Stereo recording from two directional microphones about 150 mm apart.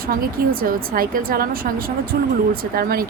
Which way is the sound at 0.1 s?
70° right (ahead or behind).